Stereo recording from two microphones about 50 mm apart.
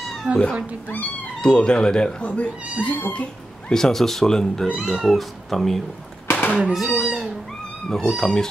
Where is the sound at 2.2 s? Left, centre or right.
Left.